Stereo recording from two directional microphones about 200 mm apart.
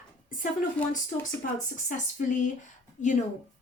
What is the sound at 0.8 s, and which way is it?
Speech, 5° left (ahead or behind).